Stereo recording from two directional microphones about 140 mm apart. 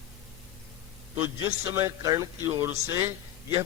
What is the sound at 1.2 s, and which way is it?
A man's voice, 20° right (ahead or behind).